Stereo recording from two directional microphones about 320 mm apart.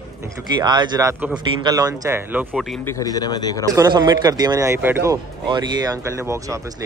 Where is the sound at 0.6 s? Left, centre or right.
Centre.